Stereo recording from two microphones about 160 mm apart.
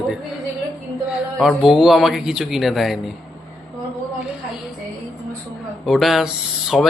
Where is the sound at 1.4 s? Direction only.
Centre (ahead or behind).